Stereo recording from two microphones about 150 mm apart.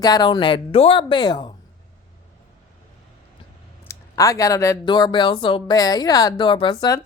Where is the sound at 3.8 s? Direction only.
20° left (ahead or behind).